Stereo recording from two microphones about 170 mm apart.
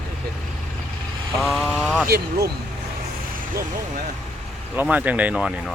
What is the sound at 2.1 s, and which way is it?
Speech, 70° right (ahead or behind).